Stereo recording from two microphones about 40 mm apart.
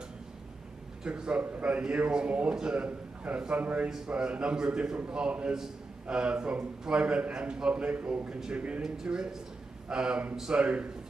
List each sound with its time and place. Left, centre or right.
1.0 s a man's voice: right
1.4 s a man's voice: right
1.7 s a man's voice: right
2.8 s a man's voice: right
4.1 s a man's voice: right
7.9 s a man's voice: right
8.8 s a man's voice: centre
10.5 s a man's voice: right